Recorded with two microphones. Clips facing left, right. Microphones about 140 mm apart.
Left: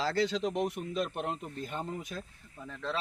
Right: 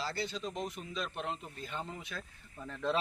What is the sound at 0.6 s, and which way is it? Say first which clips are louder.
Speech: left 7 dB; 65° left (ahead or behind).